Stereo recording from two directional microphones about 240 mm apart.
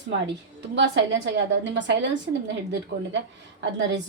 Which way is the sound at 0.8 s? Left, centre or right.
Right.